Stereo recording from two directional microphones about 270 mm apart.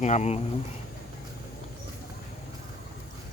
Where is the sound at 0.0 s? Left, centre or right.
Left.